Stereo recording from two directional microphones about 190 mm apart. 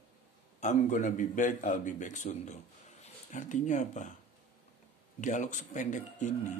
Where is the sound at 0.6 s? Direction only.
40° left (ahead or behind).